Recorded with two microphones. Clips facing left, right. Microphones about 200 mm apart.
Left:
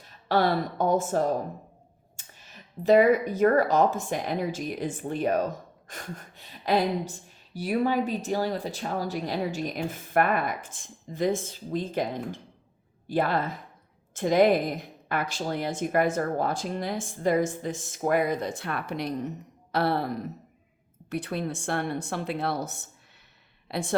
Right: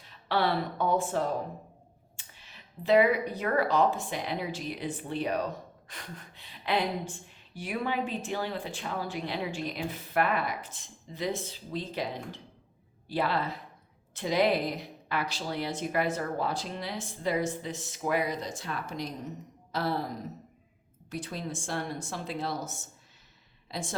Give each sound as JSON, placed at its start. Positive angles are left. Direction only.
{"t": 0.0, "sound": "a woman's voice", "side_deg": 45}